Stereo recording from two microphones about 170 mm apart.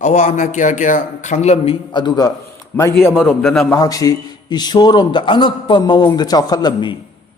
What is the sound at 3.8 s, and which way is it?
A man's voice, 20° left (ahead or behind).